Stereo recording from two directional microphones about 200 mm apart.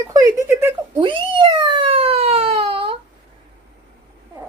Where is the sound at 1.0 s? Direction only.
25° right (ahead or behind).